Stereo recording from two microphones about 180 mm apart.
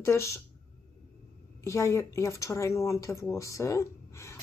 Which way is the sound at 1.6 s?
15° left (ahead or behind).